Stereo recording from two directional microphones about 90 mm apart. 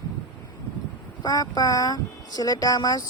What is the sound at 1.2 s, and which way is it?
Speech, 45° left (ahead or behind).